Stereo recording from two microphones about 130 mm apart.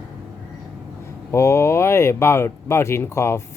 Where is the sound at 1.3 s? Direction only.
20° left (ahead or behind).